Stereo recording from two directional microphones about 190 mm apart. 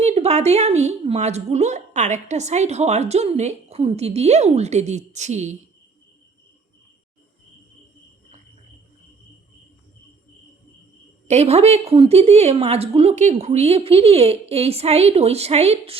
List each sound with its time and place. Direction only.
0.0 s a woman's voice: 35° right (ahead or behind)
11.3 s a woman's voice: 35° right (ahead or behind)